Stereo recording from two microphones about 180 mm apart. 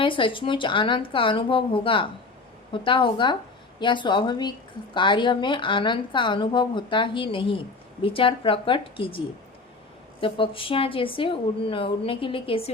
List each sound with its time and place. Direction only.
0.0 s a woman's voice: 30° left (ahead or behind)